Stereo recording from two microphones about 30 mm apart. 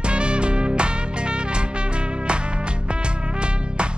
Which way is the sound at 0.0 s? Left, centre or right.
Right.